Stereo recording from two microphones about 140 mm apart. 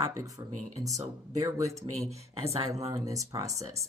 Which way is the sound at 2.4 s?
20° right (ahead or behind).